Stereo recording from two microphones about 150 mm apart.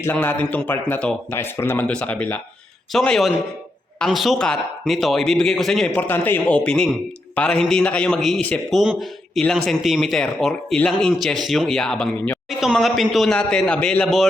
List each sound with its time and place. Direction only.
0.0 s a man's voice: 10° left (ahead or behind)